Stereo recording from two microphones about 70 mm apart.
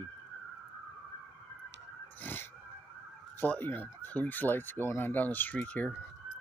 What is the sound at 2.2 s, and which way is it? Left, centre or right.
Pig, left.